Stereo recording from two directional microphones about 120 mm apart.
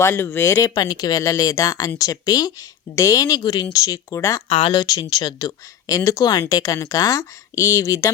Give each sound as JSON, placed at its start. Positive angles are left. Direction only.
{"t": 0.0, "sound": "speech", "side_deg": 20}
{"t": 0.7, "sound": "speech", "side_deg": 35}
{"t": 4.4, "sound": "speech", "side_deg": 45}
{"t": 4.8, "sound": "speech", "side_deg": 30}